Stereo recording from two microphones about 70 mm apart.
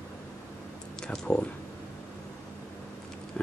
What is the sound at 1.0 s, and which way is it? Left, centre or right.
Speech, centre.